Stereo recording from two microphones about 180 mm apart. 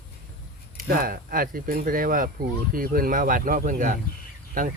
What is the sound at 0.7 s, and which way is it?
Speech, 55° right (ahead or behind).